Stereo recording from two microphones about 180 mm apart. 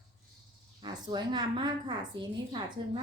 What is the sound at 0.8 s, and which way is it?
A woman's voice, 25° right (ahead or behind).